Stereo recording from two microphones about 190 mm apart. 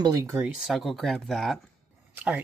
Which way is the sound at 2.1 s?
5° right (ahead or behind).